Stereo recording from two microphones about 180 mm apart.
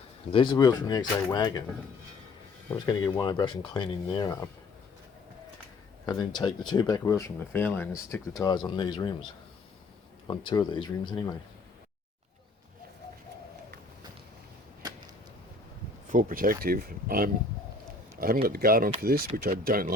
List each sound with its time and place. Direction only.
0.3 s speech: 25° left (ahead or behind)
2.8 s speech: 20° left (ahead or behind)
6.1 s speech: 25° left (ahead or behind)
10.2 s speech: 25° left (ahead or behind)
14.8 s arrow: 20° right (ahead or behind)
16.0 s speech: 50° right (ahead or behind)